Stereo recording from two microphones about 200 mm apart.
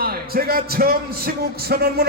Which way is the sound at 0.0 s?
50° right (ahead or behind).